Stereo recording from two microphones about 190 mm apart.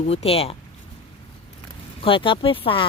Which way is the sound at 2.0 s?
25° left (ahead or behind).